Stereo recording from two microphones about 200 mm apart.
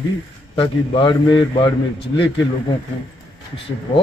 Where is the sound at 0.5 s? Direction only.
25° left (ahead or behind).